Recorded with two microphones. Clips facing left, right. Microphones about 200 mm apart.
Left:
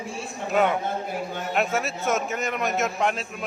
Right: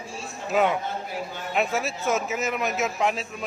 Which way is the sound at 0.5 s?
Centre (ahead or behind).